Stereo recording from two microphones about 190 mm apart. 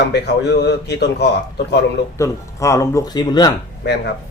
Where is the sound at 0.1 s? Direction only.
65° left (ahead or behind).